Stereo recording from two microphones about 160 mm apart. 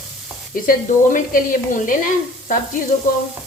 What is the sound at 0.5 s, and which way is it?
Sizzle, 60° left (ahead or behind).